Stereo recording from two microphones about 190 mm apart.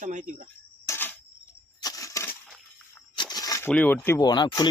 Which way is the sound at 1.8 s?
15° left (ahead or behind).